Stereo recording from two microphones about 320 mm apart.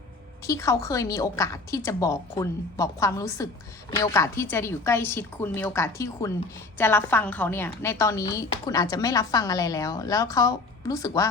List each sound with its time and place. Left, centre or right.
0.4 s a woman's voice: centre